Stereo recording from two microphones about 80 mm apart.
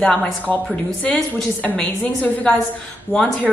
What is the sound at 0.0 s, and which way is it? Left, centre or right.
A woman's voice, centre.